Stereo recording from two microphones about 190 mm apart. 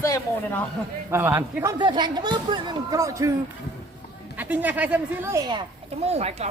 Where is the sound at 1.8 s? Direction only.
25° right (ahead or behind).